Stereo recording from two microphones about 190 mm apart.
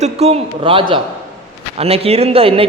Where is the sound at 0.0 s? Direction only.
30° right (ahead or behind).